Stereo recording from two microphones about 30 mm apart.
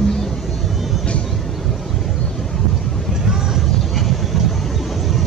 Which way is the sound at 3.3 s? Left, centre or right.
Centre.